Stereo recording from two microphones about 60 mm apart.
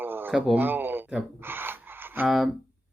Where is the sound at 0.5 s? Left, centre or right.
Right.